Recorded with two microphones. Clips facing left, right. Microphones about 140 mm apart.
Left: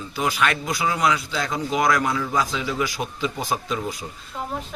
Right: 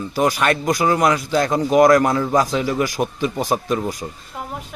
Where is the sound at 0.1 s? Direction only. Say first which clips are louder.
Right 5 dB; 40° right (ahead or behind).